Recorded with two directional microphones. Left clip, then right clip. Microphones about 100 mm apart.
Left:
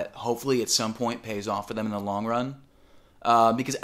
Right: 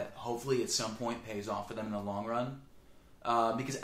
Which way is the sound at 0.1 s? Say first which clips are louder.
Left 8 dB; 40° left (ahead or behind).